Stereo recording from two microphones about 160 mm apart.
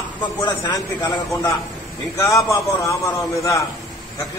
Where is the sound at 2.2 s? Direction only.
20° left (ahead or behind).